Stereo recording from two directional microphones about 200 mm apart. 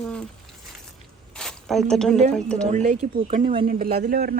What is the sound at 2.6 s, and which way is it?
Speech, 35° right (ahead or behind).